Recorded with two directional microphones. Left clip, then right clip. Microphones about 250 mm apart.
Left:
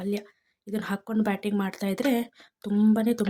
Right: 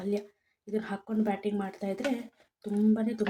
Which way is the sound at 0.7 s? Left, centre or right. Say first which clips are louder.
Left 3 dB; left.